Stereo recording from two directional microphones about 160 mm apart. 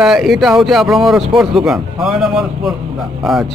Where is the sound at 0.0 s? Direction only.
Centre (ahead or behind).